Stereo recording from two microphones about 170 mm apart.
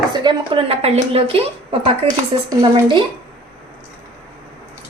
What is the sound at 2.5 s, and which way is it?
Speech, 25° right (ahead or behind).